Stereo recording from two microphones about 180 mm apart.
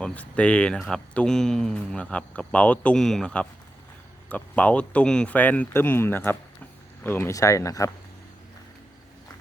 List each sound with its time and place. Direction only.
0.0 s speech: 5° left (ahead or behind)